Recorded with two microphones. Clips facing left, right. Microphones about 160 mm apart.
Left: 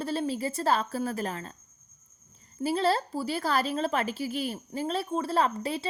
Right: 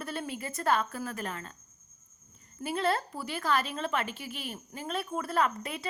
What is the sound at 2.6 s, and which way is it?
A woman's voice, 30° left (ahead or behind).